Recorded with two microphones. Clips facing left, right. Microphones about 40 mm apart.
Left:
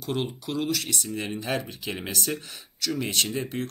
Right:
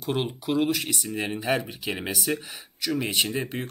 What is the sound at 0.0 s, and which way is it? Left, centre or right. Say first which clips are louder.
Speech: right 2 dB; centre.